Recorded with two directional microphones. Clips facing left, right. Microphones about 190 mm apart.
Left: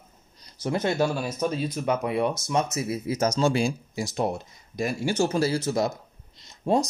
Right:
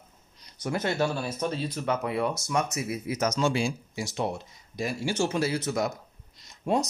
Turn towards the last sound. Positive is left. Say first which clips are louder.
# left 3 dB
turn(degrees=30)  # may be behind; listen again after turning